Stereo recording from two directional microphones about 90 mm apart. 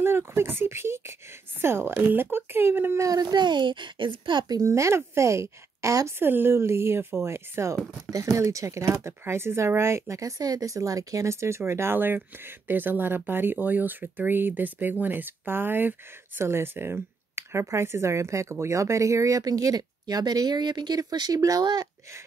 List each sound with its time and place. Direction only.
0.0 s speech: 30° right (ahead or behind)
3.0 s speech: 45° right (ahead or behind)